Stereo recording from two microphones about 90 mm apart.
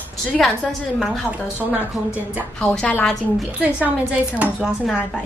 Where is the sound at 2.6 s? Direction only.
10° left (ahead or behind).